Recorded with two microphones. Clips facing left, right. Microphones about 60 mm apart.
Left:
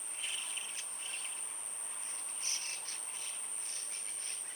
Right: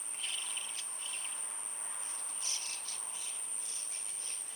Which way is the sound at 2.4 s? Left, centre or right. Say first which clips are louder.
Left 2 dB; left.